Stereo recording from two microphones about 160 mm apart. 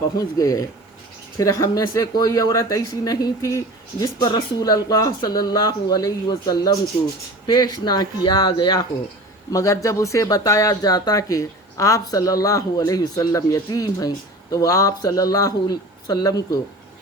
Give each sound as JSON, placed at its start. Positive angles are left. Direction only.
{"t": 0.2, "sound": "speech", "side_deg": 20}